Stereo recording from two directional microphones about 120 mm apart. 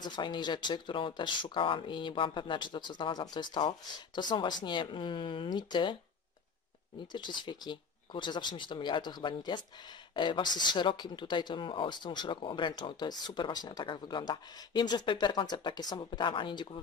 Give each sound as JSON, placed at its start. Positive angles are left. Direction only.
{"t": 0.0, "sound": "speech", "side_deg": 35}
{"t": 7.1, "sound": "speech", "side_deg": 40}